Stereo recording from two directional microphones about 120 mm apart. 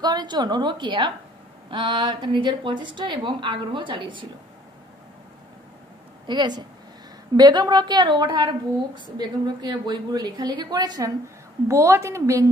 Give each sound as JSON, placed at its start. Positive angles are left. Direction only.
{"t": 0.0, "sound": "a woman's voice", "side_deg": -35}
{"t": 6.2, "sound": "a woman's voice", "side_deg": -35}